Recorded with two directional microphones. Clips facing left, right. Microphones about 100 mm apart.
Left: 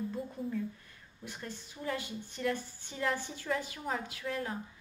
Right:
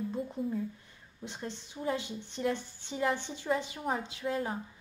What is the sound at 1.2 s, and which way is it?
Speech, 20° right (ahead or behind).